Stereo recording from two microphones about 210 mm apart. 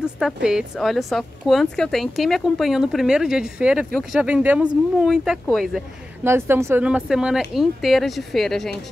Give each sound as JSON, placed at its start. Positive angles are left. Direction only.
{"t": 0.0, "sound": "a woman's voice", "side_deg": -5}
{"t": 6.2, "sound": "a woman's voice", "side_deg": -10}